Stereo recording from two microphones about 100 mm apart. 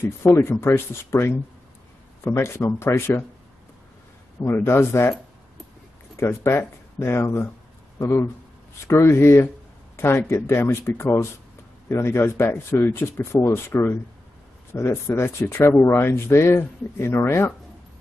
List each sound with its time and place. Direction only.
0.0 s speech: 25° left (ahead or behind)
4.4 s speech: 25° left (ahead or behind)
6.1 s speech: 25° left (ahead or behind)